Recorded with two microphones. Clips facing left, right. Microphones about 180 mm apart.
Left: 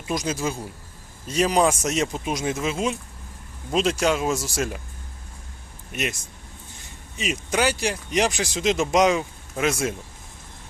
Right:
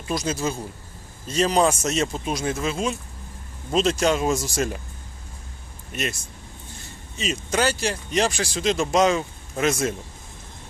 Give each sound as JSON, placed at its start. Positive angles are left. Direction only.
{"t": 0.1, "sound": "speech", "side_deg": 15}
{"t": 5.9, "sound": "speech", "side_deg": 15}
{"t": 7.2, "sound": "speech", "side_deg": 10}